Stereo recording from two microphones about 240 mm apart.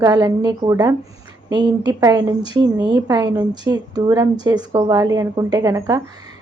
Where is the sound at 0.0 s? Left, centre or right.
Centre.